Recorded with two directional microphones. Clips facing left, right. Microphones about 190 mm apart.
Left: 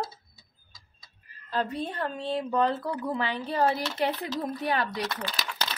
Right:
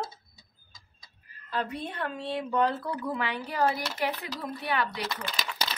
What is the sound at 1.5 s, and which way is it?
A woman's voice, 35° left (ahead or behind).